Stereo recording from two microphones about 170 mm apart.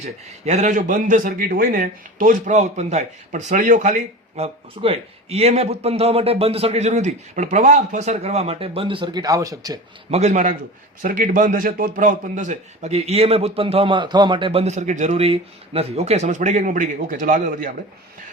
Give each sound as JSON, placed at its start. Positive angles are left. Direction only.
{"t": 0.4, "sound": "speech", "side_deg": -45}
{"t": 10.1, "sound": "a man's voice", "side_deg": -40}